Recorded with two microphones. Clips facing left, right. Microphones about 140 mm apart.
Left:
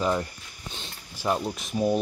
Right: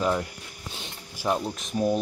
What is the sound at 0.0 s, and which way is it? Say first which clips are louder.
Speech: even; centre (ahead or behind).